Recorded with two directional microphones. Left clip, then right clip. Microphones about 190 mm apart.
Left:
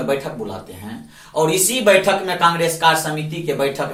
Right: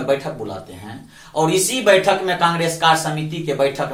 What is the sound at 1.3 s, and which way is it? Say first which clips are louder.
Speech: even; 15° right (ahead or behind).